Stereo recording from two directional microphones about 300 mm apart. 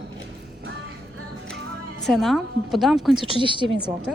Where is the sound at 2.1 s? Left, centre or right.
Centre.